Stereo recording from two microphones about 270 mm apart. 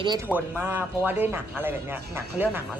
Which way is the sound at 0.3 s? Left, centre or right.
Centre.